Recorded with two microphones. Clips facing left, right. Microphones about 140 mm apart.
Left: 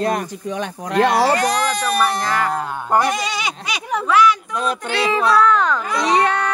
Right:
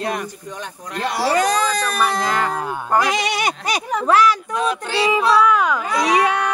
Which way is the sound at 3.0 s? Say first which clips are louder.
Right 1 dB; 80° right.